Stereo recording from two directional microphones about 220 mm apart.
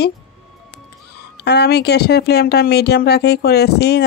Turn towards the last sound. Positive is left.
turn(degrees=50)  # may be behind; listen again after turning